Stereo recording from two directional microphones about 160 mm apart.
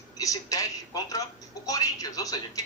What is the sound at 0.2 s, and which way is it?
A man's voice, 20° left (ahead or behind).